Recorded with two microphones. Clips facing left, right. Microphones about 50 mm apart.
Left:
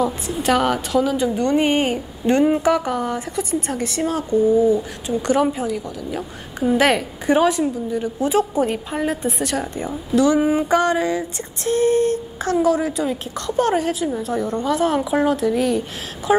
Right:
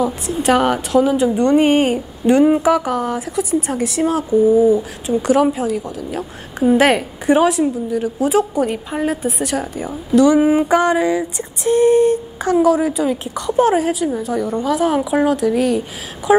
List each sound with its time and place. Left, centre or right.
0.5 s a woman's voice: centre
6.8 s female singing: right
7.2 s a woman's voice: centre
10.3 s female singing: centre
12.6 s a woman's voice: centre